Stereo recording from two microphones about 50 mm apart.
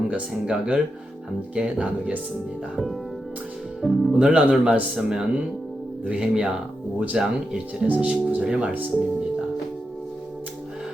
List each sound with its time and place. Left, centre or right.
0.1 s speech: centre
2.7 s speech: centre
3.8 s speech: right
7.9 s speech: right
8.7 s speech: right